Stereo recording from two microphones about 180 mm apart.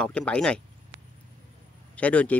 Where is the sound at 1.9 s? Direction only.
5° left (ahead or behind).